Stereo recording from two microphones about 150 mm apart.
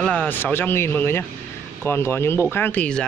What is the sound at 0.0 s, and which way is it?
Speech, 5° left (ahead or behind).